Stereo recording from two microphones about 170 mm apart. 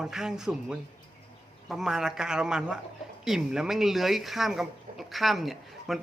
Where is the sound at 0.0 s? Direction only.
5° right (ahead or behind).